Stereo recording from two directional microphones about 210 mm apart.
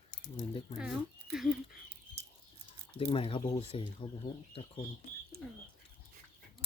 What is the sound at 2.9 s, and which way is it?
Speech, 30° left (ahead or behind).